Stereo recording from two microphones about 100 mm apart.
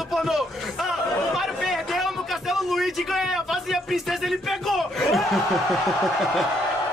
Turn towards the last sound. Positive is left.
turn(degrees=0)  # may be behind; listen again after turning